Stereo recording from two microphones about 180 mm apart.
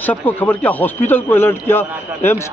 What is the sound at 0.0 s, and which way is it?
A man's voice, 10° left (ahead or behind).